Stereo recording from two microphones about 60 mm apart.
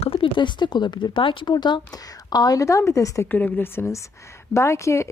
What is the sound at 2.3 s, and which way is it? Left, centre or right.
Speech, left.